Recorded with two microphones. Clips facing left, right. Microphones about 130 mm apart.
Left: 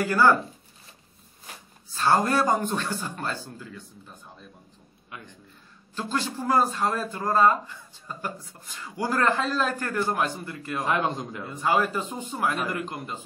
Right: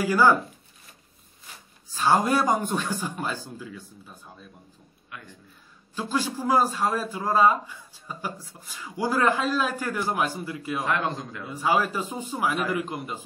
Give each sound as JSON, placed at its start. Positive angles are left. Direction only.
{"t": 0.0, "sound": "a man's voice", "side_deg": -10}
{"t": 2.0, "sound": "a man's voice", "side_deg": -10}
{"t": 5.1, "sound": "a man's voice", "side_deg": 20}
{"t": 5.9, "sound": "a man's voice", "side_deg": -10}
{"t": 10.9, "sound": "a man's voice", "side_deg": 20}
{"t": 11.4, "sound": "a man's voice", "side_deg": -10}